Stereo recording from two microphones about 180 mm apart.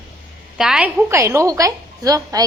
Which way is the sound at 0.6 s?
5° right (ahead or behind).